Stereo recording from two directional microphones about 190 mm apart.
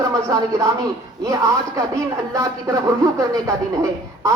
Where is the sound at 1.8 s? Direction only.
15° right (ahead or behind).